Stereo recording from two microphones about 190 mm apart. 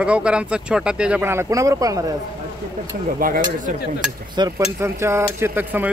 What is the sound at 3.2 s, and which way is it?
Speech, 50° right (ahead or behind).